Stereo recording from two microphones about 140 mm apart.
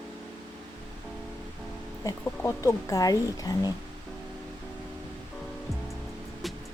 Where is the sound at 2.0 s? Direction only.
25° left (ahead or behind).